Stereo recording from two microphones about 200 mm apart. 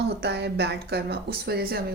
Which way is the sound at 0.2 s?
55° right (ahead or behind).